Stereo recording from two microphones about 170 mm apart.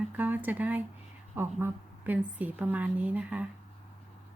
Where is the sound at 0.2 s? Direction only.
10° right (ahead or behind).